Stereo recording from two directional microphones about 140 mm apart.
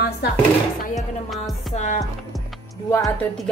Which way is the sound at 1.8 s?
60° left (ahead or behind).